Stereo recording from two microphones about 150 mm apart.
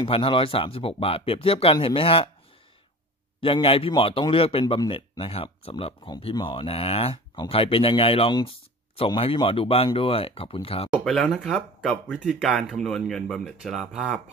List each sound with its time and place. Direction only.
0.0 s speech: 35° left (ahead or behind)
3.3 s speech: 35° left (ahead or behind)
11.1 s speech: centre (ahead or behind)